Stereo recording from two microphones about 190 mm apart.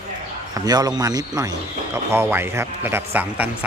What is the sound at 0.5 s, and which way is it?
Speech, 20° right (ahead or behind).